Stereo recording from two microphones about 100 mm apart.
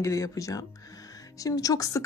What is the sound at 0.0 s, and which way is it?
A woman's voice, 30° left (ahead or behind).